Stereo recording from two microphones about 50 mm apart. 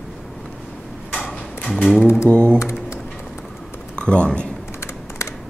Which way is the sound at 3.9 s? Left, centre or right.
Left.